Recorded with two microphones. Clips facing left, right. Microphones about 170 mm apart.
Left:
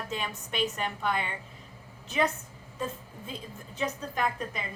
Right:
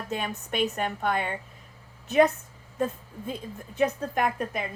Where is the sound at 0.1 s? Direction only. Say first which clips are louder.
Right 8 dB; 55° right (ahead or behind).